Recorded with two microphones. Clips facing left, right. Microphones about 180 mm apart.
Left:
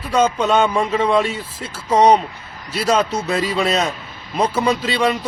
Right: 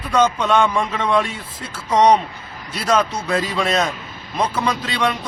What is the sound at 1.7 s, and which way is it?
Speech, 10° left (ahead or behind).